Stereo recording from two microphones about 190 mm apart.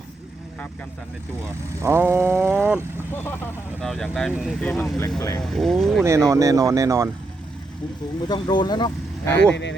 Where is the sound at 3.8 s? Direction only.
5° left (ahead or behind).